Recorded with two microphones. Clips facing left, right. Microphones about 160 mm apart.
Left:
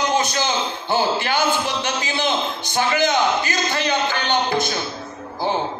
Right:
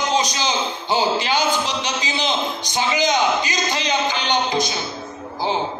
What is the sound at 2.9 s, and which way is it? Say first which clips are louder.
A man's voice: even; 15° right (ahead or behind).